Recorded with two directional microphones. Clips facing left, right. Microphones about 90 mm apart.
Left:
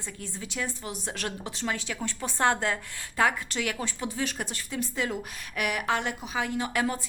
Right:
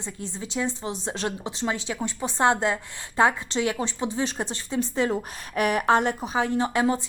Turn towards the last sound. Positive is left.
turn(degrees=-25)  # may be behind; listen again after turning